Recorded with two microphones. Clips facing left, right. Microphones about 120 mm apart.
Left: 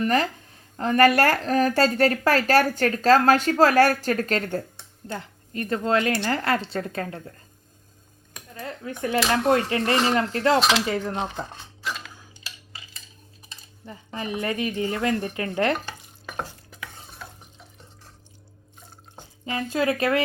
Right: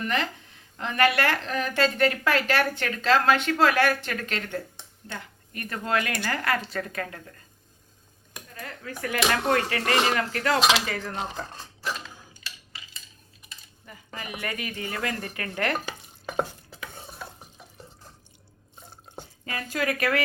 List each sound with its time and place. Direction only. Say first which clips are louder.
0.0 s a woman's voice: left 6 dB; 40° left (ahead or behind)
5.1 s speech: left 6 dB; 25° left (ahead or behind)
8.5 s speech: left 5 dB; 20° left (ahead or behind)
12.3 s a sound: left 1 dB; 25° left (ahead or behind)
13.8 s speech: left 7 dB; 30° left (ahead or behind)
19.5 s speech: left 5 dB; 25° left (ahead or behind)